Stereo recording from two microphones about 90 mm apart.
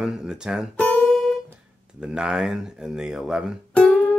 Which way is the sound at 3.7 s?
15° left (ahead or behind).